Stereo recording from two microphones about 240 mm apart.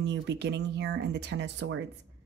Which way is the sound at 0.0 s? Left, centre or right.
Right.